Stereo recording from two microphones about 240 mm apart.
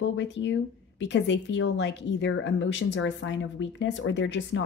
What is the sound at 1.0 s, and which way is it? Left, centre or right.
A woman's voice, left.